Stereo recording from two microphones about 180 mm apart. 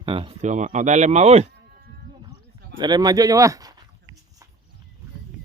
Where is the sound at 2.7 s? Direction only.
25° right (ahead or behind).